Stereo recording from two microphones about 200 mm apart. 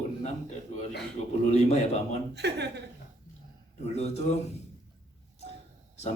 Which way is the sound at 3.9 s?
35° left (ahead or behind).